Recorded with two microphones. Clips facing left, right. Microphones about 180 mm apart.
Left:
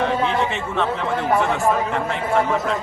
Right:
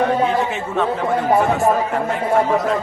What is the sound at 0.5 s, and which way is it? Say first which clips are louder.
Speech: right 2 dB; 10° right (ahead or behind).